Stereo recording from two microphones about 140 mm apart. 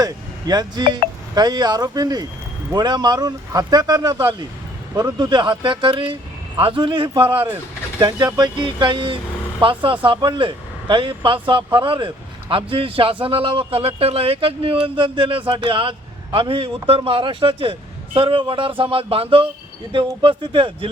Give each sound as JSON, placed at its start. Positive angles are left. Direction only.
{"t": 0.0, "sound": "a man's voice", "side_deg": -30}
{"t": 7.3, "sound": "speech", "side_deg": -15}
{"t": 8.4, "sound": "a man's voice", "side_deg": -35}